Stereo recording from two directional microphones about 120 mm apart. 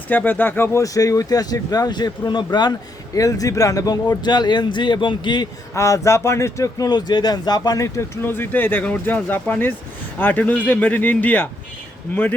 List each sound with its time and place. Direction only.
0.1 s speech: 15° left (ahead or behind); by 5.5 s 40° left (ahead or behind)
5.7 s a man's voice: 25° left (ahead or behind)